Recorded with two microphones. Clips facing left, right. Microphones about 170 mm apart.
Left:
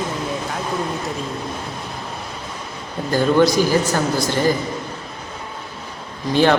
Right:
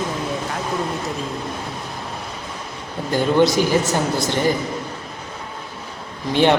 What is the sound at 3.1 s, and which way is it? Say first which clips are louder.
A man's voice: left 1 dB; 20° right (ahead or behind).